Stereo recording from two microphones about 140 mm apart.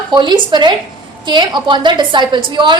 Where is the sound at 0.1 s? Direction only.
30° right (ahead or behind).